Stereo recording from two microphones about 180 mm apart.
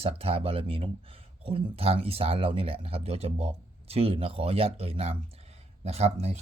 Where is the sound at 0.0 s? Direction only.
35° right (ahead or behind).